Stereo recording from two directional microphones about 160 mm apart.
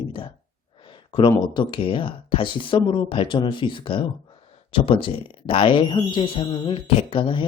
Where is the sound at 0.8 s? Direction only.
30° left (ahead or behind).